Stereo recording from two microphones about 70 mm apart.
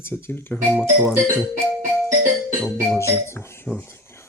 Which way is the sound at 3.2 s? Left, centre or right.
Left.